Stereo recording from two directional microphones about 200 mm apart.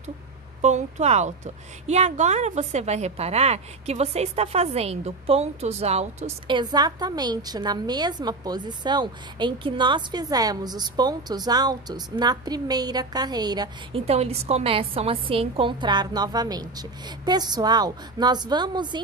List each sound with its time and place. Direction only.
0.6 s a woman's voice: 35° right (ahead or behind)